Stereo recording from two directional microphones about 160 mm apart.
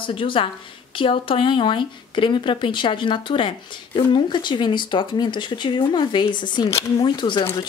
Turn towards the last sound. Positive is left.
turn(degrees=30)  # may be behind; listen again after turning